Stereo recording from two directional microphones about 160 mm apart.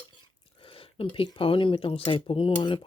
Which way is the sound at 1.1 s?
35° left (ahead or behind).